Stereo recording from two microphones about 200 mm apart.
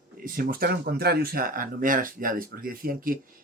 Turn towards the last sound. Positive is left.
turn(degrees=-45)  # may be behind; listen again after turning